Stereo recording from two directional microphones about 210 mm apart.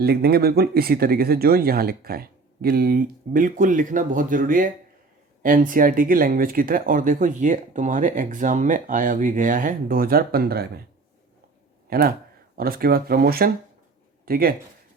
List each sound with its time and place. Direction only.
0.0 s speech: 50° right (ahead or behind)
11.9 s speech: 45° right (ahead or behind)